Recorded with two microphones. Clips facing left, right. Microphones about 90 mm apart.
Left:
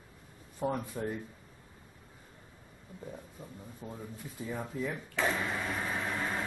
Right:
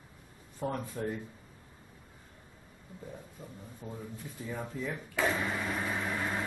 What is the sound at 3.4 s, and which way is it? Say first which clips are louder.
Speech: even; 10° left (ahead or behind).